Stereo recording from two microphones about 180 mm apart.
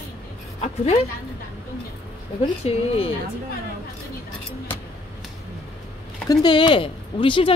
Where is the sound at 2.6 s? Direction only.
35° left (ahead or behind).